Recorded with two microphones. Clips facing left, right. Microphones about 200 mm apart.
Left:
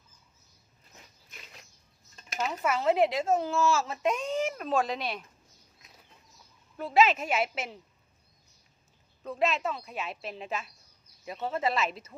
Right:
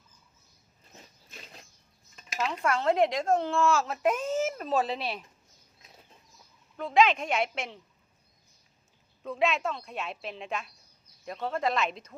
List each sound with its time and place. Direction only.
0.9 s a sound: 30° right (ahead or behind)
2.1 s speech: 5° left (ahead or behind)
6.7 s speech: 5° left (ahead or behind)
9.2 s speech: centre (ahead or behind)